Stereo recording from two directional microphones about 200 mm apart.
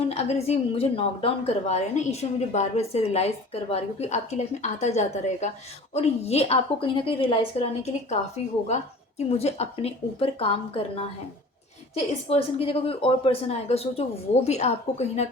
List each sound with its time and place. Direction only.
0.1 s a woman's voice: 30° left (ahead or behind)
12.3 s a woman's voice: 30° left (ahead or behind)